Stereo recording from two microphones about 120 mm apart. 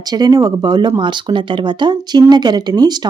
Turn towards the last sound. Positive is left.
turn(degrees=-35)  # may be behind; listen again after turning